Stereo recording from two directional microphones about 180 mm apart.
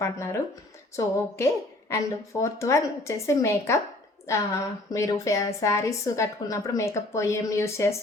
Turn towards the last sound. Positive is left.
turn(degrees=15)  # may be behind; listen again after turning